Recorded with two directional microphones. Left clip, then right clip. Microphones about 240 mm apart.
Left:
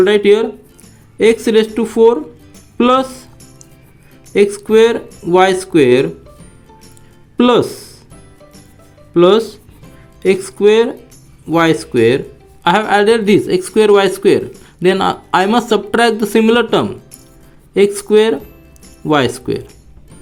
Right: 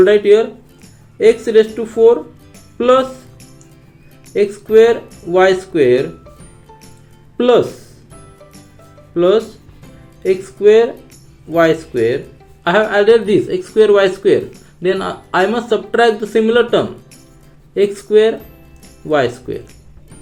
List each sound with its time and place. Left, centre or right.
0.0 s speech: left
4.4 s speech: left
7.3 s speech: left
9.1 s speech: left